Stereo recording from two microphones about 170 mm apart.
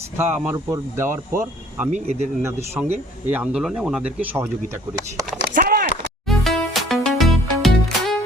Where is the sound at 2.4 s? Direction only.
15° right (ahead or behind).